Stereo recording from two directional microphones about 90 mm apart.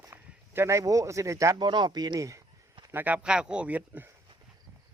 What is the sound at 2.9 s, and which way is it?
Speech, 20° right (ahead or behind).